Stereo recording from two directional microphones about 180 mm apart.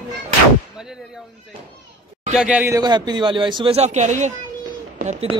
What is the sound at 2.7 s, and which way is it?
Speech, 25° right (ahead or behind).